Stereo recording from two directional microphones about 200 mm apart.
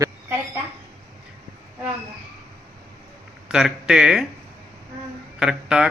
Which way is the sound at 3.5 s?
5° right (ahead or behind).